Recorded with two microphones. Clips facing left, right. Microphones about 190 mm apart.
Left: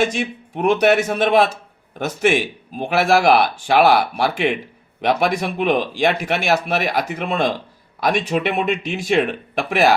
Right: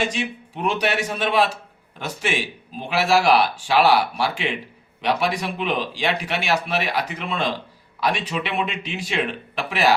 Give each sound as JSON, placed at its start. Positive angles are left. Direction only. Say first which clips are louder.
{"t": 0.1, "sound": "speech", "louder": "left 3 dB", "side_deg": 50}